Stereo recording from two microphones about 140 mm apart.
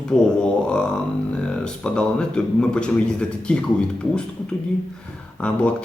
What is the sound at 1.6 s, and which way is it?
A man's voice, 5° left (ahead or behind).